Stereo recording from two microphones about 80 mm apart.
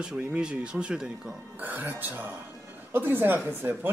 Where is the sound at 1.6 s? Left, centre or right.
Right.